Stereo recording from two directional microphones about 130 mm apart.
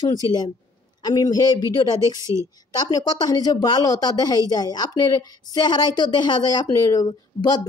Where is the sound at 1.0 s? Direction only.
30° left (ahead or behind).